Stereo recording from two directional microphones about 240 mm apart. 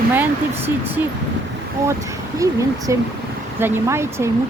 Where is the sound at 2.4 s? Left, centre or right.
Centre.